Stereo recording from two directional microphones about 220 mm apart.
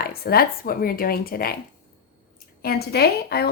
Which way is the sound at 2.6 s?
45° left (ahead or behind).